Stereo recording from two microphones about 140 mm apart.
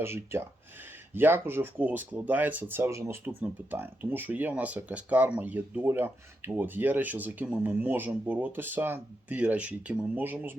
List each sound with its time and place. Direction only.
0.0 s speech: 15° right (ahead or behind)